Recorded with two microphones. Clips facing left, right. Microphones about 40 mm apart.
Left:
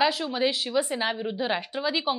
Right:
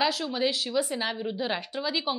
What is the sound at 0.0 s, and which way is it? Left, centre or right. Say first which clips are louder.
A woman's voice: left 2 dB; centre.